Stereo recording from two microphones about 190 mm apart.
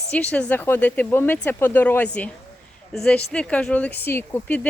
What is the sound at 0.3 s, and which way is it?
Speech, 5° left (ahead or behind).